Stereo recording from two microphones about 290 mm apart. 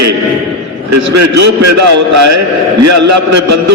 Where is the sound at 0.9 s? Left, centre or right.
Right.